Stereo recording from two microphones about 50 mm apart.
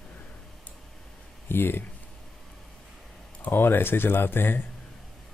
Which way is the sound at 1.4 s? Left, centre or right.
Left.